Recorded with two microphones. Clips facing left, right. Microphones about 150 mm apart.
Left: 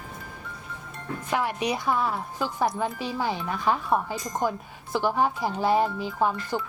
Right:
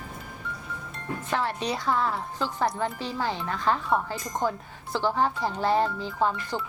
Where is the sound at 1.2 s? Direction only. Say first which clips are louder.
Left 2 dB; 10° left (ahead or behind).